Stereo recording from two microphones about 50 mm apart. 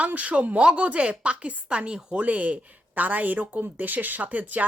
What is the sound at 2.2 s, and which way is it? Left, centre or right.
Speech, right.